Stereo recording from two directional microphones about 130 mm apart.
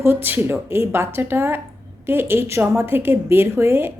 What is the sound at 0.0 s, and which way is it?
A woman's voice, 15° right (ahead or behind).